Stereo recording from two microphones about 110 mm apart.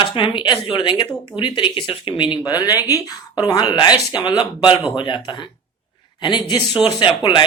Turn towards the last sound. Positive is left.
turn(degrees=45)  # may be behind; listen again after turning